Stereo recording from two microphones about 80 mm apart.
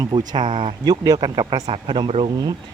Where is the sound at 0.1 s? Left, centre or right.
Right.